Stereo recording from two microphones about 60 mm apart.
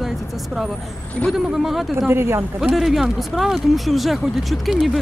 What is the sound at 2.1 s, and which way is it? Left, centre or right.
Speech, right.